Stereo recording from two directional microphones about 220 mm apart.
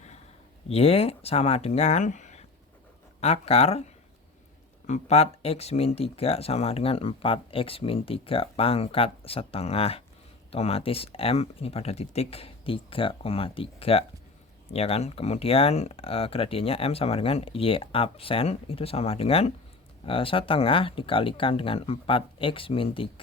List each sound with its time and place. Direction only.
0.7 s speech: 25° left (ahead or behind)
4.9 s speech: 30° left (ahead or behind)